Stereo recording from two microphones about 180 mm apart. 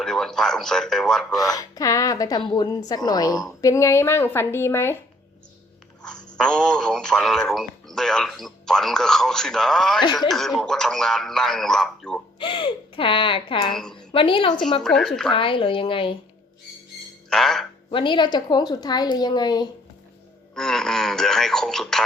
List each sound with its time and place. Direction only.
0.0 s speech: 5° left (ahead or behind)
1.4 s a woman's voice: 20° left (ahead or behind)
6.3 s speech: 5° left (ahead or behind)
12.4 s a woman's voice: 30° left (ahead or behind)
13.7 s speech: 5° left (ahead or behind)
14.1 s a woman's voice: 30° left (ahead or behind)
14.8 s speech: 5° left (ahead or behind)
15.3 s a woman's voice: 30° left (ahead or behind)
17.2 s a sound: centre (ahead or behind)
17.9 s a woman's voice: 30° left (ahead or behind)
20.6 s speech: 5° left (ahead or behind)